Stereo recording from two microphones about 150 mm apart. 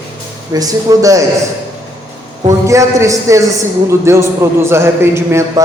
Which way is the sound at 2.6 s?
20° right (ahead or behind).